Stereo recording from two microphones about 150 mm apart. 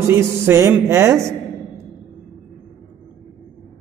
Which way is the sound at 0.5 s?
15° right (ahead or behind).